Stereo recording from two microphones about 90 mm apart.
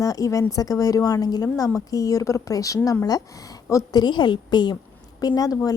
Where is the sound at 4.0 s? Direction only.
55° left (ahead or behind).